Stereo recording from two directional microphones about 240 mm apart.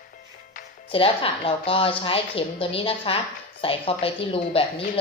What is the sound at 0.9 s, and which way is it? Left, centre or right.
Speech, left.